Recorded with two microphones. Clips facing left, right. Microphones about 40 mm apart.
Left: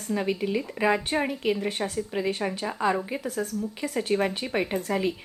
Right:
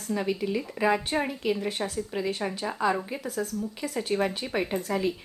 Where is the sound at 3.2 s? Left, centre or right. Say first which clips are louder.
Left 1 dB; left.